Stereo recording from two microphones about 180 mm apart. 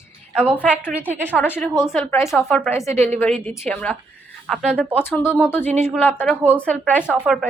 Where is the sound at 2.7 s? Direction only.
15° left (ahead or behind).